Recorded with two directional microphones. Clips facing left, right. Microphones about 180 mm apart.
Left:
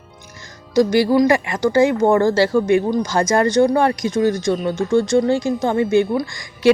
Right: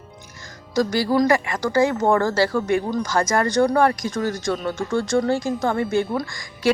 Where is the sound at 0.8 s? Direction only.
25° left (ahead or behind).